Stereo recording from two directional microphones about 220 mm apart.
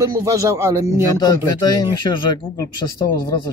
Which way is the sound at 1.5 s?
20° left (ahead or behind).